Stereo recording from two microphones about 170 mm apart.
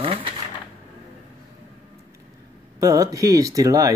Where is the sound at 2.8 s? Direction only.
20° right (ahead or behind).